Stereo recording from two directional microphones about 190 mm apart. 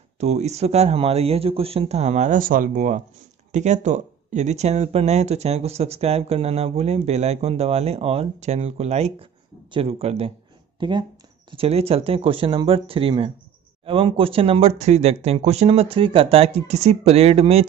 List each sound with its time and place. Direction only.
0.2 s speech: 35° right (ahead or behind)